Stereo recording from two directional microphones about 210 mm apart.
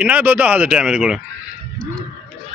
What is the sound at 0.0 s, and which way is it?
Speech, 10° right (ahead or behind).